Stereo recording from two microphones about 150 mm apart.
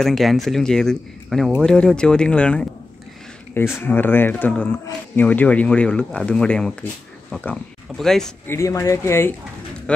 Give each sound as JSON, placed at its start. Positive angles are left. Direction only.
{"t": 0.0, "sound": "speech", "side_deg": 0}
{"t": 8.5, "sound": "speech", "side_deg": 20}
{"t": 9.9, "sound": "speech", "side_deg": 5}